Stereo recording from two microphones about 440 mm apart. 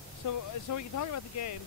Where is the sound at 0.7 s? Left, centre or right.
Left.